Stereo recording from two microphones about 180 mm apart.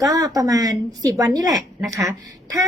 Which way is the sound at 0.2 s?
20° right (ahead or behind).